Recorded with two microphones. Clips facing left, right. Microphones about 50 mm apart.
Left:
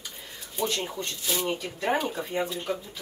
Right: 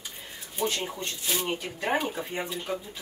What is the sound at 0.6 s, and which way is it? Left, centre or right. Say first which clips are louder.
Speech: even; right.